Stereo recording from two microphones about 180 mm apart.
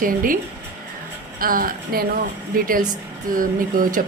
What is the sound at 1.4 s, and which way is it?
Speech, 50° right (ahead or behind).